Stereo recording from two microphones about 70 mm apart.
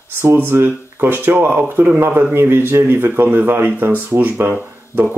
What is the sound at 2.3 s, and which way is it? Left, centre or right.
Speech, right.